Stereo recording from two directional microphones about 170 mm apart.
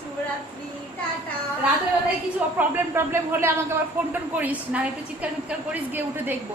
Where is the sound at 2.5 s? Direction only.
10° right (ahead or behind).